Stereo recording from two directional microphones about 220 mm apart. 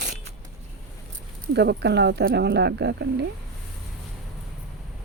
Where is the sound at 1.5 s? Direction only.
50° right (ahead or behind).